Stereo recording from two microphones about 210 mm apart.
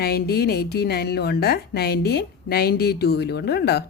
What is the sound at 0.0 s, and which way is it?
A woman's voice, 50° left (ahead or behind).